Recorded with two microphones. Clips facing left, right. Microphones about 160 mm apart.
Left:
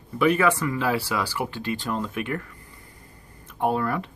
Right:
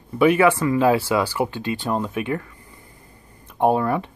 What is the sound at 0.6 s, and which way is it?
Speech, 20° right (ahead or behind).